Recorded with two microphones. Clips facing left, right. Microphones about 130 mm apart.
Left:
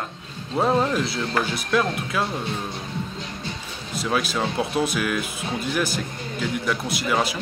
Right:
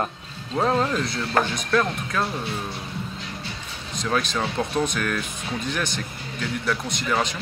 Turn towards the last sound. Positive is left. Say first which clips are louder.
# left 2 dB
turn(degrees=5)  # may be behind; listen again after turning